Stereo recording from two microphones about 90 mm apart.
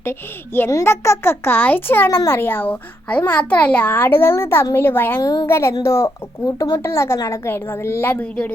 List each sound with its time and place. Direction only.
0.0 s a child's voice: 25° left (ahead or behind)
5.2 s a woman's voice: 45° left (ahead or behind)
5.5 s a child's voice: 30° left (ahead or behind); by 8.5 s 15° left (ahead or behind)